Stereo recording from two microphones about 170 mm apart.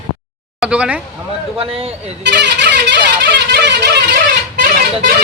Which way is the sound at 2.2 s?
90° right.